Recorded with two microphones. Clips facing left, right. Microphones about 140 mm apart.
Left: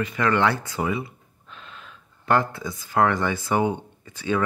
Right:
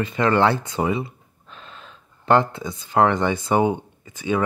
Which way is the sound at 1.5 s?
35° right (ahead or behind).